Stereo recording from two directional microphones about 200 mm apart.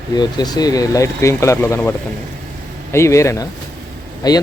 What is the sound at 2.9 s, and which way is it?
Speech, 15° left (ahead or behind).